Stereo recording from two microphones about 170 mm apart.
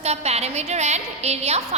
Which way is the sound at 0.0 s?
40° right (ahead or behind).